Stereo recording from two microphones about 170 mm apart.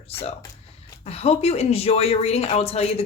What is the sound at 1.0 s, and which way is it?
Speech, 35° left (ahead or behind).